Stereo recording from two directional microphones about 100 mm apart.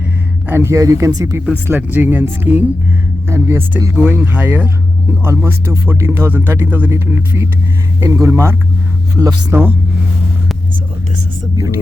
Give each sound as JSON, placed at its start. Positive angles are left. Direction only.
{"t": 0.4, "sound": "speech", "side_deg": -25}
{"t": 1.5, "sound": "speech", "side_deg": -20}
{"t": 3.9, "sound": "speech", "side_deg": -20}